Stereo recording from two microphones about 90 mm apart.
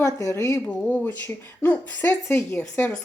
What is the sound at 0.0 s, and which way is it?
Speech, 35° left (ahead or behind).